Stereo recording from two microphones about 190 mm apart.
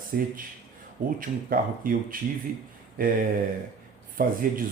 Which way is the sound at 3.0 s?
45° right (ahead or behind).